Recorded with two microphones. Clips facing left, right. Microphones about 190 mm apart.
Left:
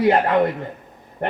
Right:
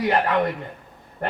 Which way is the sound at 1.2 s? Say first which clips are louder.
Left 3 dB; 20° left (ahead or behind).